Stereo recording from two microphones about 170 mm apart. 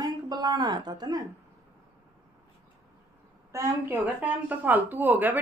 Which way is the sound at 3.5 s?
15° right (ahead or behind).